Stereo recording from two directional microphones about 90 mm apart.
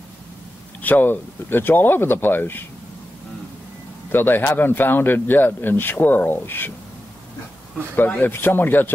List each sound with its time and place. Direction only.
0.8 s a man's voice: 20° left (ahead or behind)
4.1 s a man's voice: 25° left (ahead or behind)
7.9 s a man's voice: 20° left (ahead or behind)